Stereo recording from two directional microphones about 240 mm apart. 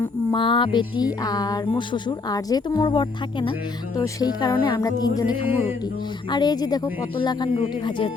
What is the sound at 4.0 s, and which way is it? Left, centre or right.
Speech, centre.